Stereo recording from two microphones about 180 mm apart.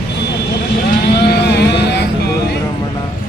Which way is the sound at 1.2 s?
65° left (ahead or behind).